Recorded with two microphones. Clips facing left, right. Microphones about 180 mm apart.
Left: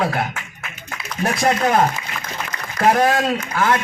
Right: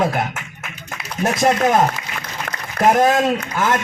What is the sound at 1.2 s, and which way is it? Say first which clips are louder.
Speech: right 2 dB; 20° right (ahead or behind).